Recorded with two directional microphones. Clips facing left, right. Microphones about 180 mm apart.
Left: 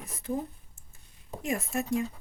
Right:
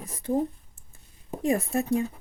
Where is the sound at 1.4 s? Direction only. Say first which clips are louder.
Right 6 dB; 35° right (ahead or behind).